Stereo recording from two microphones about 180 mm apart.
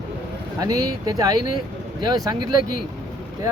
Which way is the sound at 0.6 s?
20° right (ahead or behind).